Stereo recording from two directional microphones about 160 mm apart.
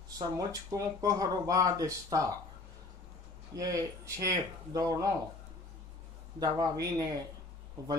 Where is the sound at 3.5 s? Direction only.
20° right (ahead or behind).